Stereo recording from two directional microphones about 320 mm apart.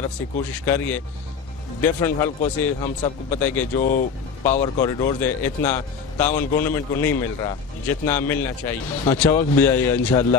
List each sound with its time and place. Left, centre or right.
0.5 s a man's voice: centre
3.7 s speech: left
4.4 s a man's voice: centre